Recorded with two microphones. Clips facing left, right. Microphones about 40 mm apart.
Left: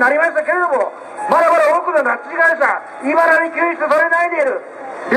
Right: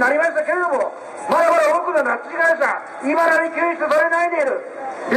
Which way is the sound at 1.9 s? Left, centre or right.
Centre.